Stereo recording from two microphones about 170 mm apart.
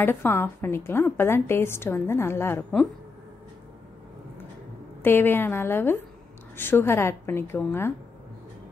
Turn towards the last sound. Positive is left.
turn(degrees=15)  # may be behind; listen again after turning